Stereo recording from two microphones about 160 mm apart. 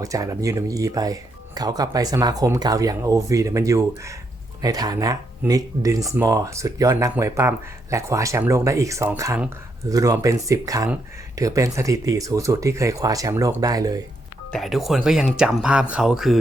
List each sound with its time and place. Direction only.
0.0 s speech: 20° right (ahead or behind)
14.5 s speech: centre (ahead or behind)